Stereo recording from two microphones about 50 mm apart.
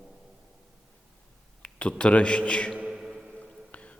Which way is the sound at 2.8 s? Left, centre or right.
Centre.